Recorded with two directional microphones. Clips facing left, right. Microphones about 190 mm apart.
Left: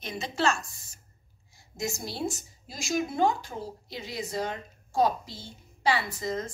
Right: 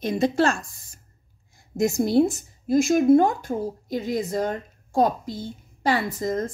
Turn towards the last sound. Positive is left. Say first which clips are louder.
# right 6 dB
turn(degrees=-50)  # may be behind; listen again after turning